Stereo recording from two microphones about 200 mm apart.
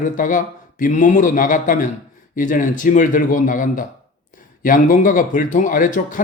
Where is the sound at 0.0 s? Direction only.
40° left (ahead or behind).